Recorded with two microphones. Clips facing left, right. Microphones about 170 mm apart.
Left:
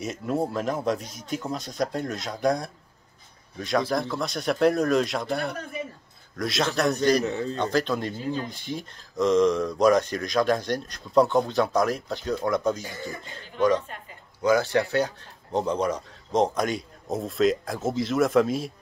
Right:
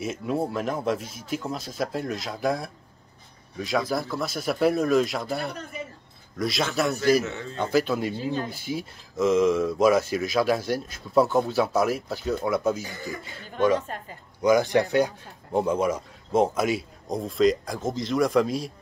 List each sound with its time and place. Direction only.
0.0 s speech: centre (ahead or behind)
7.2 s speech: 35° left (ahead or behind)
7.5 s speech: 10° right (ahead or behind)
13.7 s a woman's voice: 40° right (ahead or behind)
14.4 s speech: 15° right (ahead or behind); by 18.7 s centre (ahead or behind)